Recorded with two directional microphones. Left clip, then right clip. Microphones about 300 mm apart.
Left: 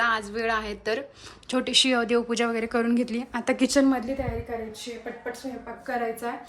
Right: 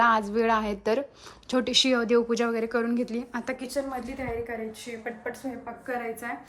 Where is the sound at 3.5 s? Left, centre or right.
Left.